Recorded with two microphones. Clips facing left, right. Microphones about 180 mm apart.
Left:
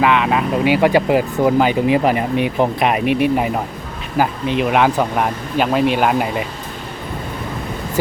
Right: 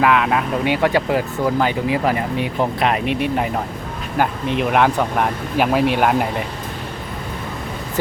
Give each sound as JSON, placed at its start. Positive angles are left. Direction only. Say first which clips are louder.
{"t": 0.0, "sound": "speech", "louder": "left 1 dB", "side_deg": 0}